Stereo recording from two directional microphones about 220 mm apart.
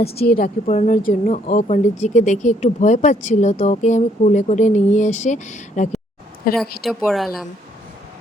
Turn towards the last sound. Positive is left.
turn(degrees=0)  # may be behind; listen again after turning